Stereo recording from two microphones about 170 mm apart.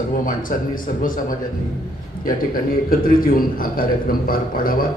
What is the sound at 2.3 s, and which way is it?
A man's voice, 55° left (ahead or behind).